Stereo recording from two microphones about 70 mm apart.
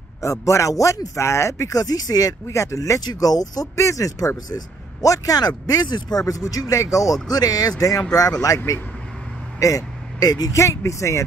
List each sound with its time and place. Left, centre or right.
0.2 s speech: left
1.2 s speech: left
2.4 s speech: left
3.0 s speech: left
3.7 s speech: left
5.7 s speech: left
7.2 s speech: left
9.6 s speech: left
10.6 s speech: left